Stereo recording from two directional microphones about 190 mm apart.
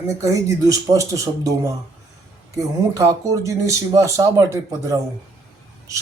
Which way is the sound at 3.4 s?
15° right (ahead or behind).